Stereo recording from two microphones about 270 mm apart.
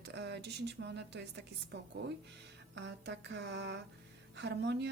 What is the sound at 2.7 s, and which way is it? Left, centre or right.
Speech, right.